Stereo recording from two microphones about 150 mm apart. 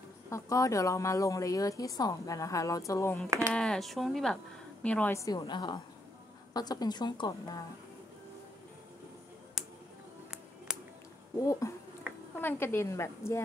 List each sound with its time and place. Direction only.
0.3 s a woman's voice: 20° left (ahead or behind)
3.5 s a woman's voice: 5° left (ahead or behind)
5.1 s a woman's voice: 25° left (ahead or behind)
9.6 s a sound: centre (ahead or behind)
10.7 s music: 5° right (ahead or behind)
11.6 s a woman's voice: 20° left (ahead or behind)
12.1 s a sound: 10° right (ahead or behind)
12.4 s a woman's voice: 15° left (ahead or behind)